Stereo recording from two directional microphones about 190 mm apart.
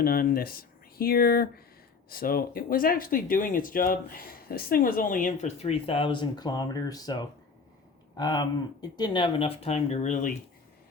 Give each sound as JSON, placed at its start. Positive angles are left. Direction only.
{"t": 0.0, "sound": "speech", "side_deg": 50}